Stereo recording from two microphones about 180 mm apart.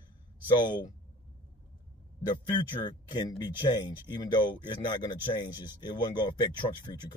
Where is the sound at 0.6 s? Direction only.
25° left (ahead or behind).